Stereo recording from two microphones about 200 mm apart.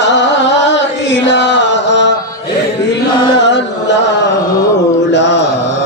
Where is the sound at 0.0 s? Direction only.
60° left (ahead or behind).